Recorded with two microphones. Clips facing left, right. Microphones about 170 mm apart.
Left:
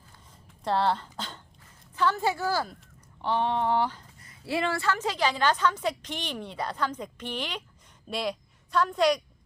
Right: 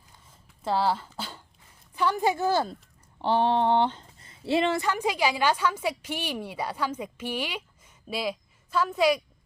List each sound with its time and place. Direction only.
0.6 s a woman's voice: 5° right (ahead or behind)